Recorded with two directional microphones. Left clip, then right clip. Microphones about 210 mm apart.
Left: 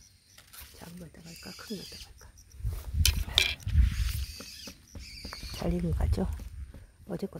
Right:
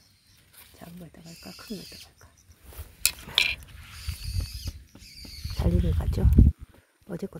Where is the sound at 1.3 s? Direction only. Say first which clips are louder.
Right 1 dB; 25° right (ahead or behind).